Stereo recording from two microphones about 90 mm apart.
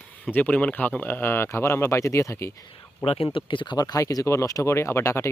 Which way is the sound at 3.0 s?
90° left.